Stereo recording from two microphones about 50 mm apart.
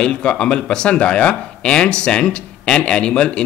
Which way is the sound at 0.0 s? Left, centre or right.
Centre.